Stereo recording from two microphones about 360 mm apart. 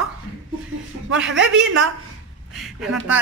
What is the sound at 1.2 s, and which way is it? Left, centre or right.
Speech, right.